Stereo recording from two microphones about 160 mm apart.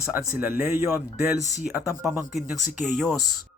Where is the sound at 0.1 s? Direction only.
10° right (ahead or behind).